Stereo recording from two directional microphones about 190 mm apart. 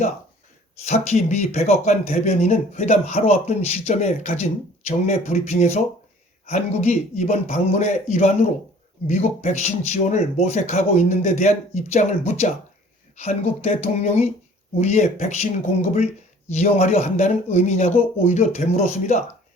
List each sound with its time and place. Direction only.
0.9 s speech: 35° left (ahead or behind)
16.5 s speech: 35° left (ahead or behind)